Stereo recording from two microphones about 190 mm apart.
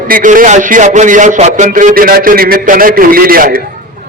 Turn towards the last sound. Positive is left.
turn(degrees=-50)  # may be behind; listen again after turning